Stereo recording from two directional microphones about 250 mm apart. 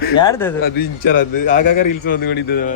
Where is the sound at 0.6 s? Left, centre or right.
Left.